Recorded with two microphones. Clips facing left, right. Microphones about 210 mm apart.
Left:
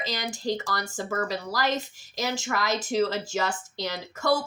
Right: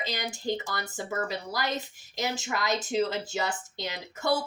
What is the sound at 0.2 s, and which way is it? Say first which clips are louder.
A woman's voice: left 2 dB; 20° right (ahead or behind).